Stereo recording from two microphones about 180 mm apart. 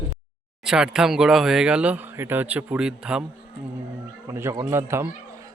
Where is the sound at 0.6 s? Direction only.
5° right (ahead or behind).